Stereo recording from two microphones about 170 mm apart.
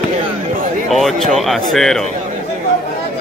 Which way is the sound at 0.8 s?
Centre (ahead or behind).